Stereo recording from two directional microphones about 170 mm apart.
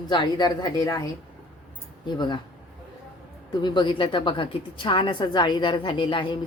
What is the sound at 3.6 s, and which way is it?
A woman's voice, 25° left (ahead or behind).